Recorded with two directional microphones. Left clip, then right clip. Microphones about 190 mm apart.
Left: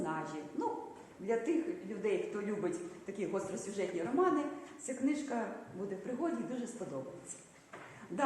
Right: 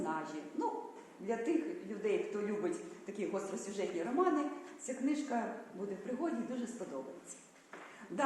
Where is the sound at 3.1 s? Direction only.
Centre (ahead or behind).